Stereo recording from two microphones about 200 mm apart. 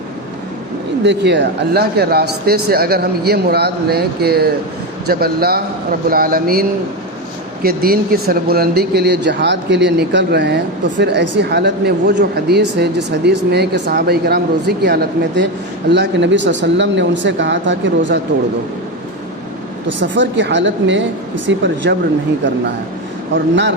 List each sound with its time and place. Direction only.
1.0 s speech: 60° right (ahead or behind)
20.0 s speech: 65° right (ahead or behind)